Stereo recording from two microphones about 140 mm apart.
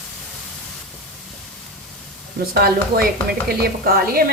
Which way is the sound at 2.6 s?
90° right.